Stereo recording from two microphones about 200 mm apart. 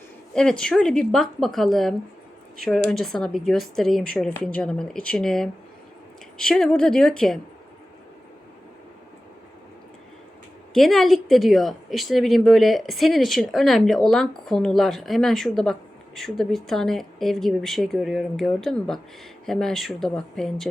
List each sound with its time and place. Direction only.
0.3 s speech: 5° left (ahead or behind)
10.8 s speech: centre (ahead or behind)